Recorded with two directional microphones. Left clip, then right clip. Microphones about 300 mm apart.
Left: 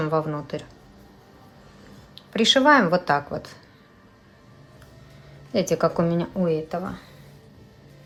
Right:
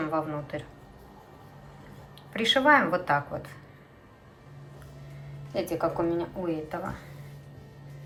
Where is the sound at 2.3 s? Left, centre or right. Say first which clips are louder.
Left 4 dB; centre.